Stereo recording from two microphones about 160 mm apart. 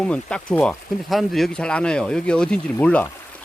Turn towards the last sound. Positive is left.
turn(degrees=10)  # may be behind; listen again after turning